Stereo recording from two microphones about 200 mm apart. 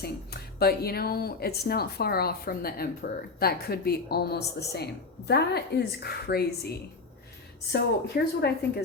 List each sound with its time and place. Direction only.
0.0 s a woman's voice: 50° left (ahead or behind)